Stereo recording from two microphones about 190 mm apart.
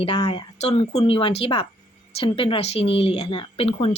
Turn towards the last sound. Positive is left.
turn(degrees=30)  # may be behind; listen again after turning